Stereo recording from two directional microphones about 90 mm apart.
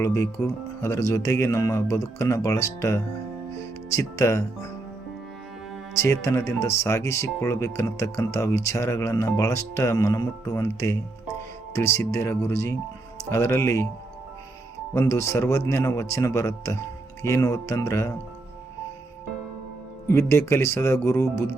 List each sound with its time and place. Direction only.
0.0 s speech: 30° left (ahead or behind)
5.9 s speech: 30° left (ahead or behind)
14.9 s speech: 30° left (ahead or behind)
20.1 s speech: 30° left (ahead or behind)